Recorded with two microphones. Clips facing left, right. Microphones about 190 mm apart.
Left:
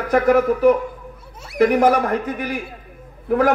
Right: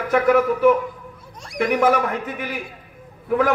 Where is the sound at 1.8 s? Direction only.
40° left (ahead or behind).